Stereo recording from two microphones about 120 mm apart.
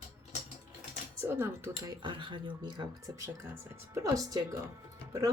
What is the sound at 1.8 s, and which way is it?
Speech, 40° right (ahead or behind).